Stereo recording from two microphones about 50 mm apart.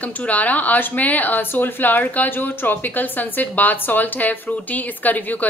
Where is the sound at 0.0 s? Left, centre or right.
Left.